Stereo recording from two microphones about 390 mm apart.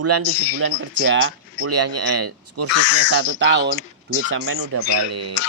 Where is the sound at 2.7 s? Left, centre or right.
Left.